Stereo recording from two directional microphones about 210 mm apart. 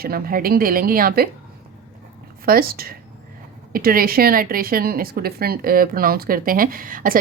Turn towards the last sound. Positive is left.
turn(degrees=-40)  # may be behind; listen again after turning